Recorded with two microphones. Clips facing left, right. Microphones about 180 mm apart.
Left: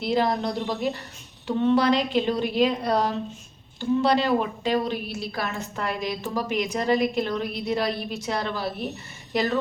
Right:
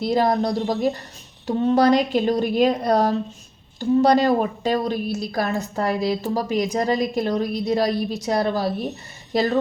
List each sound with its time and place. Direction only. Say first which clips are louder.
0.0 s a woman's voice: right 4 dB; 40° right (ahead or behind)